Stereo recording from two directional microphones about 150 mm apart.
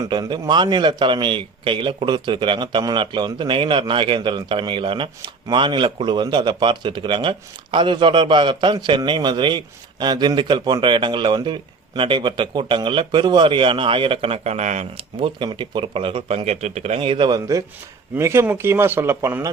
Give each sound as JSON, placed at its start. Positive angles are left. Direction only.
{"t": 0.0, "sound": "speech", "side_deg": -30}
{"t": 15.2, "sound": "speech", "side_deg": -35}